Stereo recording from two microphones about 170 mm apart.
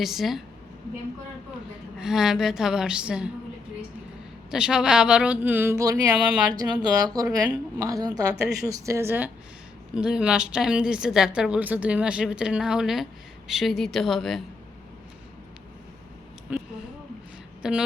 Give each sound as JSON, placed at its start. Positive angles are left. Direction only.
{"t": 0.0, "sound": "a woman's voice", "side_deg": 0}
{"t": 2.0, "sound": "a woman's voice", "side_deg": -5}
{"t": 4.5, "sound": "a woman's voice", "side_deg": -5}
{"t": 16.5, "sound": "a woman's voice", "side_deg": -10}